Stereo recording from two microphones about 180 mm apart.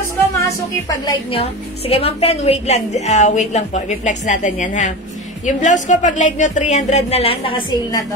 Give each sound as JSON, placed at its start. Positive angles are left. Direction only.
{"t": 0.8, "sound": "a woman's voice", "side_deg": 20}
{"t": 1.4, "sound": "a woman's voice", "side_deg": 35}